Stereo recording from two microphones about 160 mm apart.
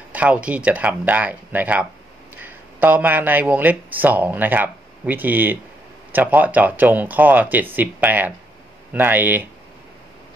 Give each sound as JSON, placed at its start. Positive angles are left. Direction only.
{"t": 0.1, "sound": "speech", "side_deg": -10}